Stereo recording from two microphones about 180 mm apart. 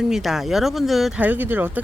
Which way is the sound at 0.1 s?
Centre (ahead or behind).